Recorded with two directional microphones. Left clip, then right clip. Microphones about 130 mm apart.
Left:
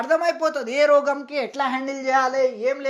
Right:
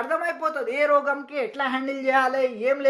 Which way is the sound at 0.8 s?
70° left (ahead or behind).